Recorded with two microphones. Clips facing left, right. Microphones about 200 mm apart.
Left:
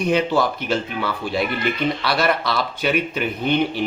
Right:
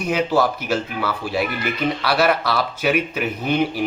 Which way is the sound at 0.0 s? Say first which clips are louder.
Even; 5° right (ahead or behind).